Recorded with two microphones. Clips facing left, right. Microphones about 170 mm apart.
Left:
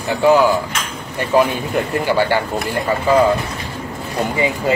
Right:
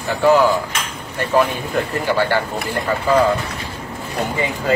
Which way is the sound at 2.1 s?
15° left (ahead or behind).